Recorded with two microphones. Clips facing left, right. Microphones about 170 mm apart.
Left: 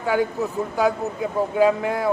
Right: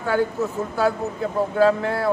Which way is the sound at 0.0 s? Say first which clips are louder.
Even; 15° left (ahead or behind).